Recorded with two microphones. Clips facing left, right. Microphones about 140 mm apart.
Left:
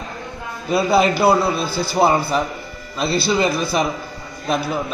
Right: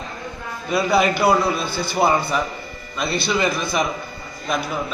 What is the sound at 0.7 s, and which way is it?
A man's voice, 30° left (ahead or behind).